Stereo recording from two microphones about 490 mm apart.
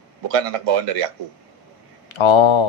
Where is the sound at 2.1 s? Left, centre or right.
Left.